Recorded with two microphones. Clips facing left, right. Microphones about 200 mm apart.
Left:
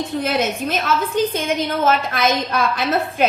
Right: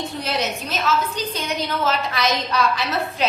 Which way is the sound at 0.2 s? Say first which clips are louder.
Left 5 dB; 50° left (ahead or behind).